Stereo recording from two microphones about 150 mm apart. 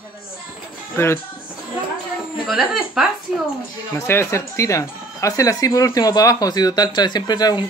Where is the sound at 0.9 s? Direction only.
15° left (ahead or behind).